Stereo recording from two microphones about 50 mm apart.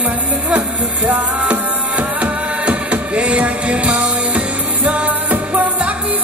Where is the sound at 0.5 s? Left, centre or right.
Right.